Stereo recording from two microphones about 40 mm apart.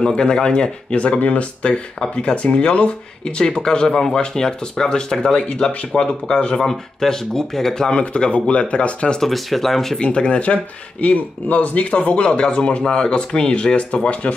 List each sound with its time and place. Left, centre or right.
0.0 s speech: centre
0.9 s speech: left; by 8.0 s centre
8.3 s speech: left
9.2 s speech: centre
9.9 s speech: left